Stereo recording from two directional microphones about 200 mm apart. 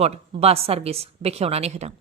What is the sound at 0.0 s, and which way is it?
A woman's voice, 30° right (ahead or behind).